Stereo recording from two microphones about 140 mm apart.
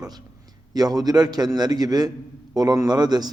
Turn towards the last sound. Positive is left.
turn(degrees=-30)  # may be behind; listen again after turning